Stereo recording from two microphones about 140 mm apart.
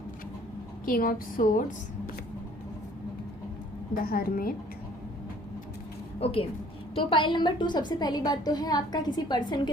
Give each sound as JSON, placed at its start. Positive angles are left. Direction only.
{"t": 0.9, "sound": "a woman's voice", "side_deg": 85}
{"t": 4.0, "sound": "a woman's voice", "side_deg": 90}
{"t": 6.1, "sound": "a woman's voice", "side_deg": 45}